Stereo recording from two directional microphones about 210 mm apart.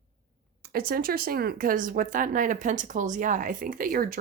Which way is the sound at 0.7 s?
45° right (ahead or behind).